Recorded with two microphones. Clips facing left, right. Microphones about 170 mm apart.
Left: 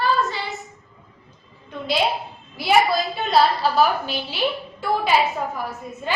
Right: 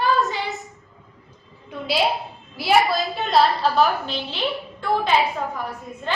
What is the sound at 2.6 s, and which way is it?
A woman's voice, centre (ahead or behind).